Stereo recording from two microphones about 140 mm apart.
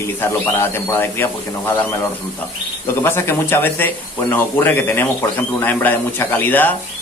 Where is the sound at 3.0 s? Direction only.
15° left (ahead or behind).